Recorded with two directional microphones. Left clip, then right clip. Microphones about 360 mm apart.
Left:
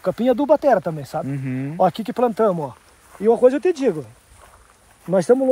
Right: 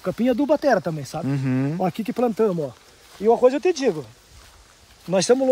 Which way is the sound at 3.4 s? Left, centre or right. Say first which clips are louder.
Left 2 dB; left.